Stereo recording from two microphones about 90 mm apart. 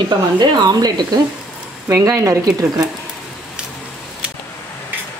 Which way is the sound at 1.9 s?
40° right (ahead or behind).